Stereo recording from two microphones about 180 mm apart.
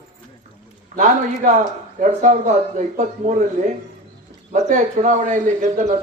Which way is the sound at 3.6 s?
45° right (ahead or behind).